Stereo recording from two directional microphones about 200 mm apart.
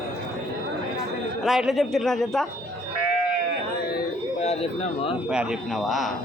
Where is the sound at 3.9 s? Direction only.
35° left (ahead or behind).